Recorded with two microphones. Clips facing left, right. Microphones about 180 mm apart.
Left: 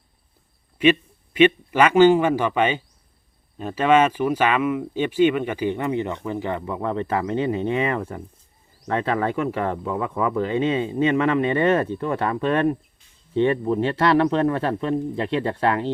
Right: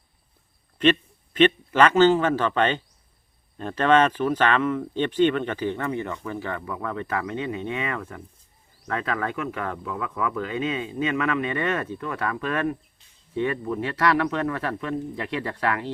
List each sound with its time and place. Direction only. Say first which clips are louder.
0.8 s speech: left 2 dB; 10° left (ahead or behind); by 15.9 s 25° left (ahead or behind)